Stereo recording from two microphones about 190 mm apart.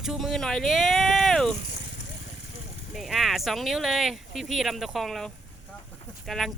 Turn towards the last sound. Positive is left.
turn(degrees=0)  # may be behind; listen again after turning